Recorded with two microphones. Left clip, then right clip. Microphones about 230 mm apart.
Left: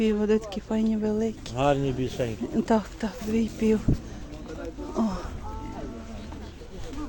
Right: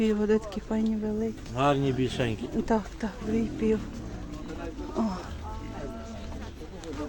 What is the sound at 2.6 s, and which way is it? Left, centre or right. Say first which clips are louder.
Speech: left 3 dB; centre.